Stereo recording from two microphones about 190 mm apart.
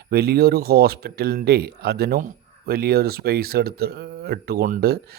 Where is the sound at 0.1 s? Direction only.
55° right (ahead or behind).